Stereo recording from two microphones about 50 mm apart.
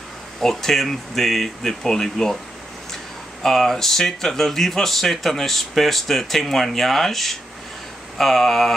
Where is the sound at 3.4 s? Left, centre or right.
Centre.